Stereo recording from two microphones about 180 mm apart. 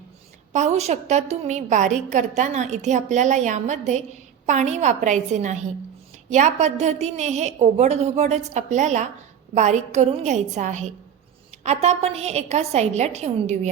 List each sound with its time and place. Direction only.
0.5 s a woman's voice: 40° right (ahead or behind)